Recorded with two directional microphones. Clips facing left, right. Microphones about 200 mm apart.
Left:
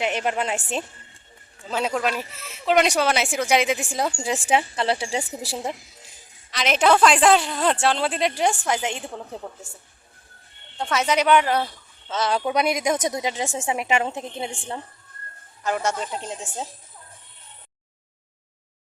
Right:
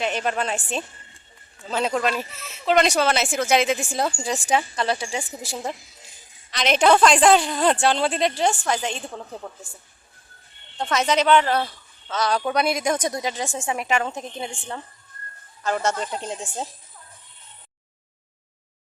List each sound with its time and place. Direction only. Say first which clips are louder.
0.0 s speech: even; 20° left (ahead or behind)
1.6 s speech: right 1 dB; 5° left (ahead or behind)
4.2 s a woman's voice: left 1 dB; 25° left (ahead or behind)
6.5 s a woman's voice: right 1 dB; 5° left (ahead or behind)
8.4 s speech: even; 15° left (ahead or behind)
10.8 s speech: right 1 dB; 10° left (ahead or behind)
12.0 s a woman's voice: even; 25° left (ahead or behind)
15.6 s a woman's voice: right 1 dB; 10° left (ahead or behind)